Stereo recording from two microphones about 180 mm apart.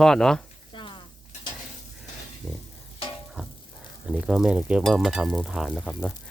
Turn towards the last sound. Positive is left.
turn(degrees=5)  # may be behind; listen again after turning